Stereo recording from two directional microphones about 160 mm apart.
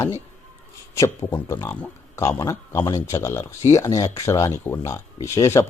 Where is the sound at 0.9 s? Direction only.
20° left (ahead or behind).